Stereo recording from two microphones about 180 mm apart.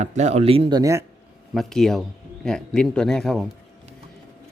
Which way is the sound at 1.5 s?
Centre (ahead or behind).